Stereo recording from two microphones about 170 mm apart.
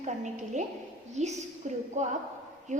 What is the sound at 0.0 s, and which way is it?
A woman's voice, 45° right (ahead or behind).